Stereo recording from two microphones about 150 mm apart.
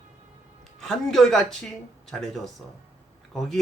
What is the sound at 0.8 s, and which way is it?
Speech, centre (ahead or behind).